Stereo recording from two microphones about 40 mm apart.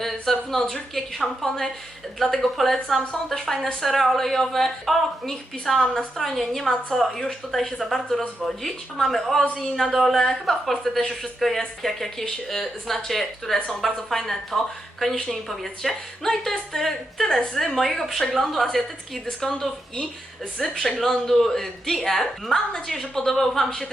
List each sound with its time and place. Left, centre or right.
0.0 s a woman's voice: centre